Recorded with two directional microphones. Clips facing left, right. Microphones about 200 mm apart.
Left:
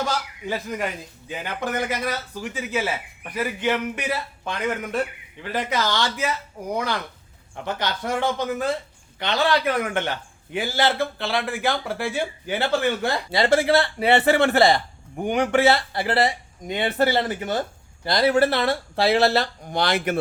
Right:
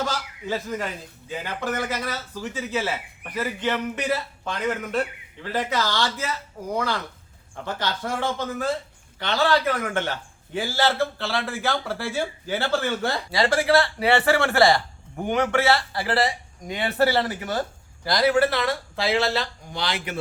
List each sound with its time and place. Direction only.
0.0 s a man's voice: 15° left (ahead or behind); by 19.2 s 35° left (ahead or behind)
19.4 s speech: 55° left (ahead or behind)